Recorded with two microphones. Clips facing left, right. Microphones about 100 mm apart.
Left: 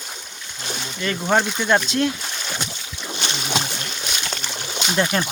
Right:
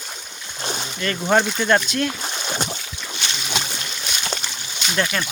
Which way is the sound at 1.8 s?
25° left (ahead or behind).